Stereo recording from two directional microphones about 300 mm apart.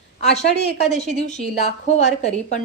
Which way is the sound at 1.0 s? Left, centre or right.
Left.